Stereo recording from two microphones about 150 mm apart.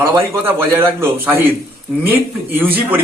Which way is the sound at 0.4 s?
15° right (ahead or behind).